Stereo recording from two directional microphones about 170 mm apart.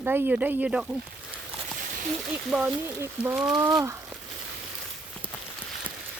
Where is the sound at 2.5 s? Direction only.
5° right (ahead or behind).